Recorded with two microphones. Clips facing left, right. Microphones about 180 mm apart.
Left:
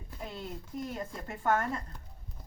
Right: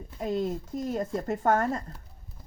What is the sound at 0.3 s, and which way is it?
Speech, 45° right (ahead or behind).